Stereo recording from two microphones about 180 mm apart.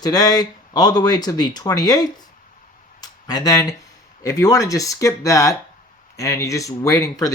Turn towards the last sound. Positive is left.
turn(degrees=20)  # may be behind; listen again after turning